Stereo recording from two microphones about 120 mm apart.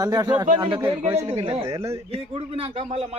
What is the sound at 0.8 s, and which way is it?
Speech, 20° right (ahead or behind).